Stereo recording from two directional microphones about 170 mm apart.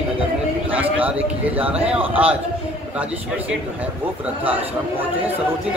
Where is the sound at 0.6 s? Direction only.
10° right (ahead or behind).